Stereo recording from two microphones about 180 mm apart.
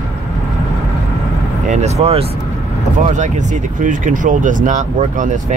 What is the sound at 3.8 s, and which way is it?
Speech, 45° right (ahead or behind).